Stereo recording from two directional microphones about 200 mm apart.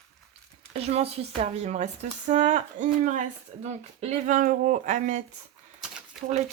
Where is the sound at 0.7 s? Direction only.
30° right (ahead or behind).